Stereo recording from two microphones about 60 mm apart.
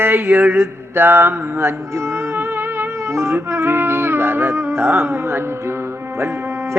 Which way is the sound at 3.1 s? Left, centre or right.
Right.